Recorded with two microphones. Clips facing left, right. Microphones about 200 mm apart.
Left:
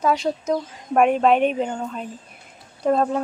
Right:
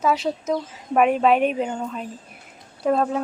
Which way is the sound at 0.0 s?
5° right (ahead or behind).